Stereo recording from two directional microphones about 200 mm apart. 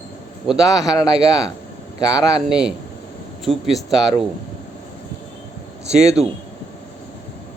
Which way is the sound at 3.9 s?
20° left (ahead or behind).